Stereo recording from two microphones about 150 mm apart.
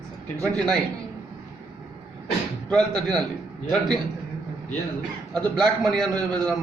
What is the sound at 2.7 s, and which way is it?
Speech, 5° left (ahead or behind).